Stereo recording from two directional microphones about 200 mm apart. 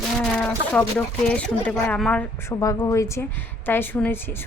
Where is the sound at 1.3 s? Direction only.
5° left (ahead or behind).